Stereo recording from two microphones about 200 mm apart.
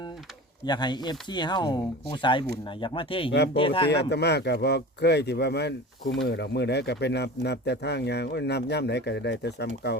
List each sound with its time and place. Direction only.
0.6 s speech: 20° left (ahead or behind)
3.8 s speech: 55° left (ahead or behind)